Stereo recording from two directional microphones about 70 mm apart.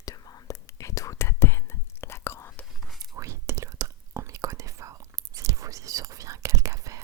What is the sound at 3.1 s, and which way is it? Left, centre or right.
Whispering, right.